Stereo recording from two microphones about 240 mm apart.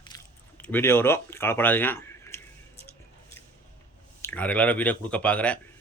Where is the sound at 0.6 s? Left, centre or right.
Centre.